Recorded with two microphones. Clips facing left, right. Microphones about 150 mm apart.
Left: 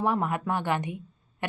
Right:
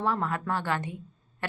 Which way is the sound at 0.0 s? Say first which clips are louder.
Left 2 dB; 15° left (ahead or behind).